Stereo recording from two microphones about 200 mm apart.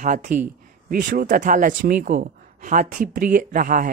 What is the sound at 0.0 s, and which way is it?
Speech, 40° right (ahead or behind).